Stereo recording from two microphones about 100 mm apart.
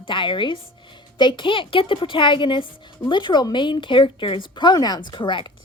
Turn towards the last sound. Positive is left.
turn(degrees=55)  # may be behind; listen again after turning